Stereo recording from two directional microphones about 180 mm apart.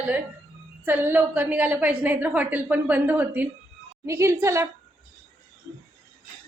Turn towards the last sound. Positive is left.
turn(degrees=-15)  # may be behind; listen again after turning